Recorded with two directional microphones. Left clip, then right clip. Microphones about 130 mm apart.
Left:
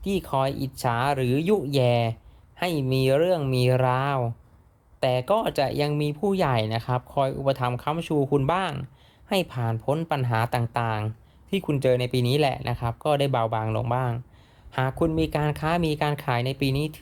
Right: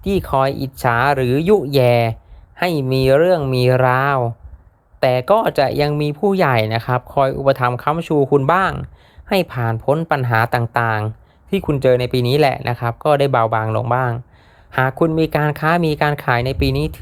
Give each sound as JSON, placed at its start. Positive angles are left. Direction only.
{"t": 0.0, "sound": "speech", "side_deg": -25}